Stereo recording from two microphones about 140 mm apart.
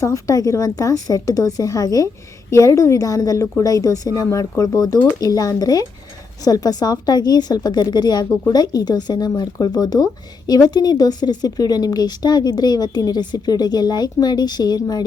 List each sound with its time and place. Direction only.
0.0 s a woman's voice: 25° left (ahead or behind)